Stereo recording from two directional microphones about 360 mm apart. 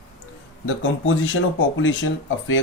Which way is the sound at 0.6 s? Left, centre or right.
Left.